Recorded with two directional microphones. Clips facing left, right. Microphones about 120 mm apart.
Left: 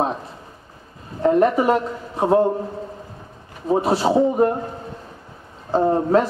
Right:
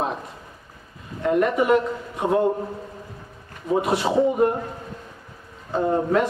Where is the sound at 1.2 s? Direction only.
35° left (ahead or behind).